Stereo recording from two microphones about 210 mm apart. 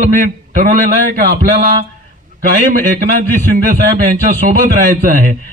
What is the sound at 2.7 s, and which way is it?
A man's voice, 40° right (ahead or behind).